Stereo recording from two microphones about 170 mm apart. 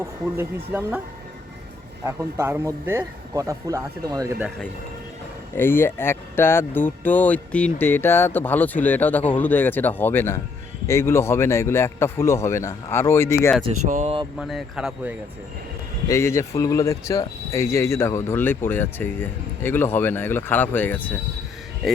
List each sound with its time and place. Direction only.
0.0 s speech: 15° right (ahead or behind)
2.0 s speech: 15° right (ahead or behind)
5.5 s speech: 15° left (ahead or behind)
13.7 s speech: 45° right (ahead or behind)
14.3 s speech: centre (ahead or behind)
16.0 s speech: 15° left (ahead or behind)